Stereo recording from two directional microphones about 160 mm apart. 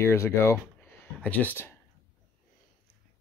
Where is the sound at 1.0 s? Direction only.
10° left (ahead or behind).